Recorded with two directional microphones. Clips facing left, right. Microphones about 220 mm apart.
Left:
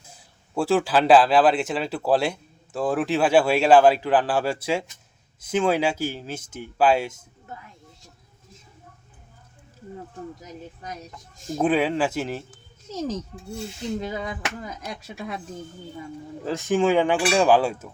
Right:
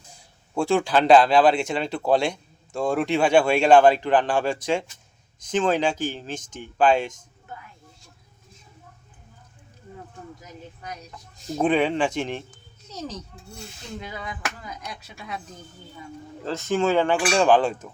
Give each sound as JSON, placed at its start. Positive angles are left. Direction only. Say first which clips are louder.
{"t": 0.0, "sound": "speech", "louder": "even", "side_deg": 5}
{"t": 11.4, "sound": "speech", "louder": "even", "side_deg": 5}
{"t": 12.9, "sound": "speech", "louder": "left 6 dB", "side_deg": 45}
{"t": 14.0, "sound": "speech", "louder": "left 6 dB", "side_deg": 35}
{"t": 14.8, "sound": "speech", "louder": "left 4 dB", "side_deg": 45}
{"t": 16.4, "sound": "speech", "louder": "left 2 dB", "side_deg": 15}